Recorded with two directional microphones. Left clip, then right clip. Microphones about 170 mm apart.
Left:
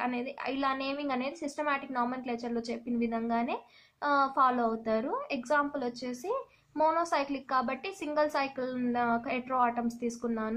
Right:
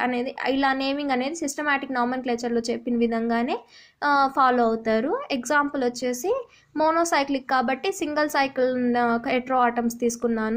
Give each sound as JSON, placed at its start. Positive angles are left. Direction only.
{"t": 0.0, "sound": "a woman's voice", "side_deg": -30}